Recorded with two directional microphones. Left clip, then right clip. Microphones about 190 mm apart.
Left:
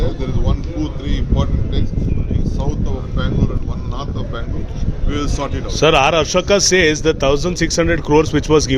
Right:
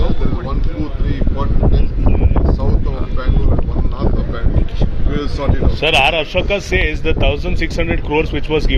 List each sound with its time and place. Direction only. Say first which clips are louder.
5.8 s a man's voice: left 1 dB; 50° left (ahead or behind)